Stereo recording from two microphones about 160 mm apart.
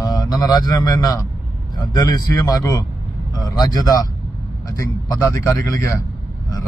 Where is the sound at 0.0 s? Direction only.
25° left (ahead or behind).